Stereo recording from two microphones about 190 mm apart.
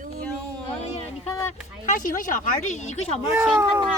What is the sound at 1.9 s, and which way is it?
Speech, 45° left (ahead or behind).